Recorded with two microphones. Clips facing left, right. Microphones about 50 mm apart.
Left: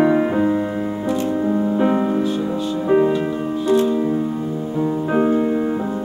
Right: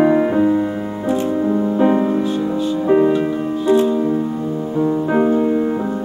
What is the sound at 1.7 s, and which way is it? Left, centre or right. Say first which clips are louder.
Music: right 4 dB; centre.